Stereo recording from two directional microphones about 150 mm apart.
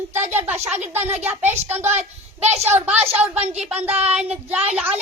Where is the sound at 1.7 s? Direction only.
45° right (ahead or behind).